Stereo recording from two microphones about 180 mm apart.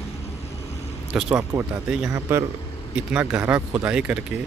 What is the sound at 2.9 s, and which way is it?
Speech, 5° right (ahead or behind).